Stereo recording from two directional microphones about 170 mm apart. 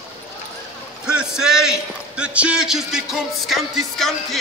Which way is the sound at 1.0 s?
5° right (ahead or behind).